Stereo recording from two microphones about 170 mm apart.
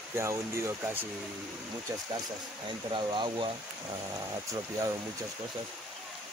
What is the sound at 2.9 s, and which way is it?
Speech, 30° right (ahead or behind).